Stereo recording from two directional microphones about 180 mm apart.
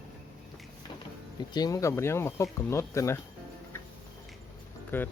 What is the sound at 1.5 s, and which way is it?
Speech, 20° left (ahead or behind).